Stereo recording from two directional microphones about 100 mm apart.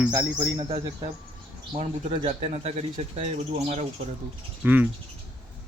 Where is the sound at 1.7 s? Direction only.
80° right.